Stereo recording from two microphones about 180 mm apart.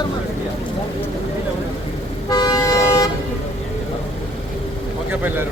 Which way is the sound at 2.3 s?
20° left (ahead or behind).